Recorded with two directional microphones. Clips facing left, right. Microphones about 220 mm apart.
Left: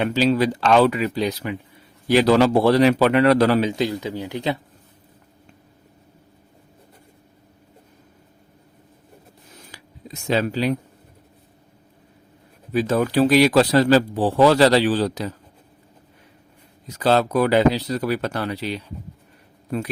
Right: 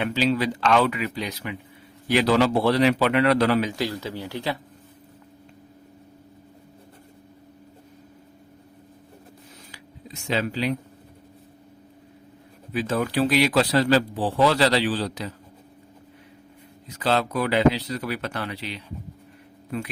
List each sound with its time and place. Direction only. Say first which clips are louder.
0.0 s speech: left 4 dB; 40° left (ahead or behind)
3.6 s speech: left 5 dB; 20° left (ahead or behind)
9.7 s a sound: left 4 dB; 40° left (ahead or behind)
12.7 s speech: left 5 dB; 40° left (ahead or behind)
17.0 s speech: left 6 dB; 40° left (ahead or behind)